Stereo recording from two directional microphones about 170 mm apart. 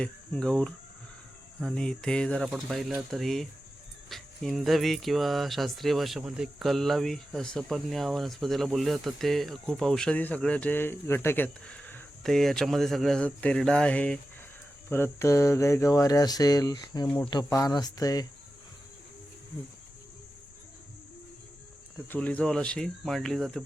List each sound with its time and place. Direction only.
0.0 s speech: 5° left (ahead or behind)
14.8 s a sound: 15° left (ahead or behind)
22.1 s speech: 10° left (ahead or behind)